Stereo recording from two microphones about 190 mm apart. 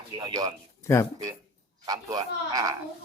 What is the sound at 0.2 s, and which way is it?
Speech, 20° right (ahead or behind).